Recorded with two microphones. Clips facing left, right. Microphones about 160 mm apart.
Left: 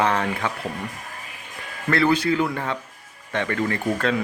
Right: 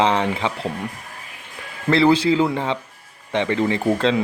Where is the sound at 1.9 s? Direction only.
25° right (ahead or behind).